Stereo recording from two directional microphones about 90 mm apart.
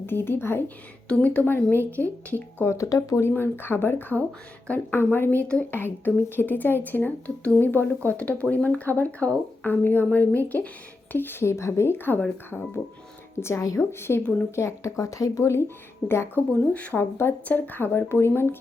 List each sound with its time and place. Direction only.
0.0 s a woman's voice: 25° left (ahead or behind)
13.4 s a woman's voice: 35° left (ahead or behind)
16.5 s speech: 15° left (ahead or behind)
17.0 s a woman's voice: 25° left (ahead or behind)